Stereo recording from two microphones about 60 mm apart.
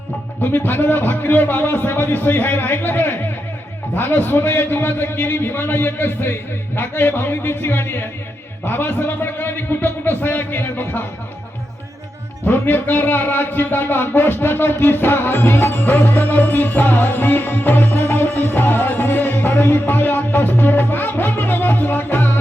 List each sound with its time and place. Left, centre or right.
0.5 s a man's voice: left
12.5 s a man's voice: left